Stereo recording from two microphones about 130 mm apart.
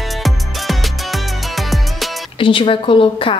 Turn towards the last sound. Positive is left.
turn(degrees=40)  # may be behind; listen again after turning